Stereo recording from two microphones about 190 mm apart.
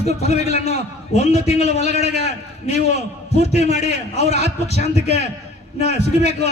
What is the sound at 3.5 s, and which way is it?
A man's voice, 35° left (ahead or behind).